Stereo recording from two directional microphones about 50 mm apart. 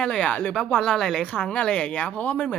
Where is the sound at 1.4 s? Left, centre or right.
Centre.